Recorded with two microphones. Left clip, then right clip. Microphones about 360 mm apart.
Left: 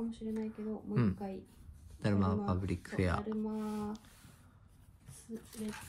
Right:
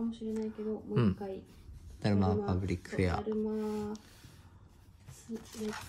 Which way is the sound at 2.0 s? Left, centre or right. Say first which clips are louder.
Right 3 dB; centre.